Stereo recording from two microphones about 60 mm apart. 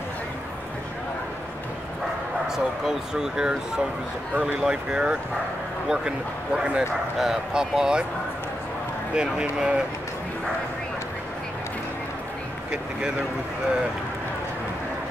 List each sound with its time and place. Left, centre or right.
2.4 s speech: centre
9.1 s speech: centre